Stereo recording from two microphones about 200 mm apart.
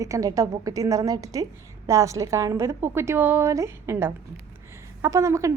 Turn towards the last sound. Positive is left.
turn(degrees=-15)  # may be behind; listen again after turning